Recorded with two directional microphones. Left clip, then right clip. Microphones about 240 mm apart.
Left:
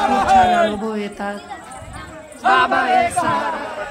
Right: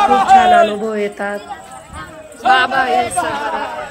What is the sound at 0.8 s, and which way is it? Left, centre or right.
Speech, centre.